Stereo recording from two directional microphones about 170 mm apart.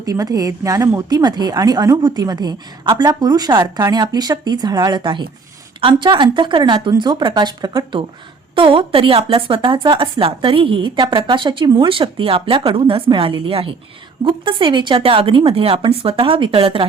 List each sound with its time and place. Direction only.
0.0 s a woman's voice: 20° right (ahead or behind)